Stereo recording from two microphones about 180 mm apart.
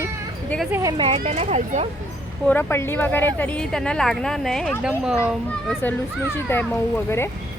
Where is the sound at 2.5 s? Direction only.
10° left (ahead or behind).